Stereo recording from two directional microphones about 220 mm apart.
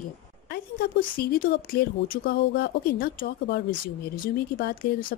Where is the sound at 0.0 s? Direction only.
40° left (ahead or behind).